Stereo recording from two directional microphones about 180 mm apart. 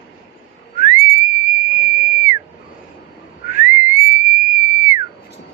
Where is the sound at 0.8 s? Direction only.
45° left (ahead or behind).